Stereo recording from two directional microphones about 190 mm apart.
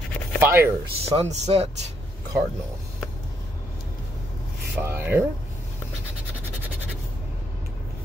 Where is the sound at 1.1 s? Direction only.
35° right (ahead or behind).